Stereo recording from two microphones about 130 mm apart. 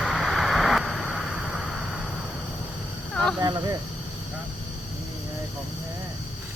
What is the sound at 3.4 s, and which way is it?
Speech, 30° right (ahead or behind).